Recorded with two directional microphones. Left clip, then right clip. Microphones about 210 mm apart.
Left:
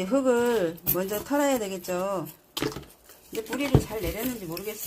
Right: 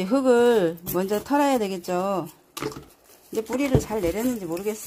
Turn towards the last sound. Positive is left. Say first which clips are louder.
# right 6 dB
turn(degrees=-50)  # may be behind; listen again after turning